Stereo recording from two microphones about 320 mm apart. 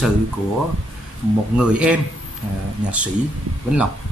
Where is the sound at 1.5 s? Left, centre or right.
Centre.